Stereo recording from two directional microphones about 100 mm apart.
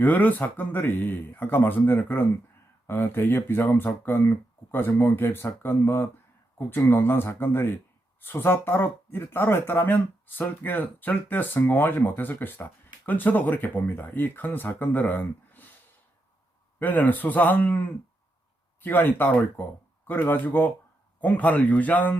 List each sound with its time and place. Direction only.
0.0 s speech: 15° left (ahead or behind)
16.8 s speech: 20° left (ahead or behind)
18.8 s speech: 20° left (ahead or behind)